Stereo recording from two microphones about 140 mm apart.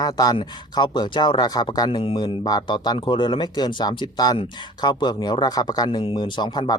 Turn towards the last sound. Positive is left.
turn(degrees=30)  # may be behind; listen again after turning